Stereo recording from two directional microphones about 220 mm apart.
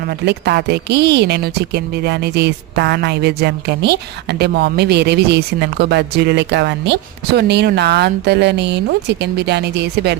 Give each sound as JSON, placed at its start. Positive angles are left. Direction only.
{"t": 0.3, "sound": "a woman's voice", "side_deg": -50}